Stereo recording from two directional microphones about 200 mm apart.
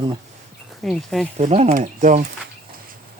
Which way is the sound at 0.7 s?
Centre (ahead or behind).